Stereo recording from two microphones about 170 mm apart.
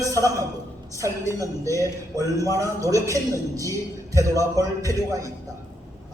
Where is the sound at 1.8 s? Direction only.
20° right (ahead or behind).